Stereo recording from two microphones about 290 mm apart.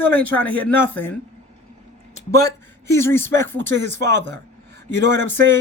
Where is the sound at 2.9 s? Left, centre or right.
Centre.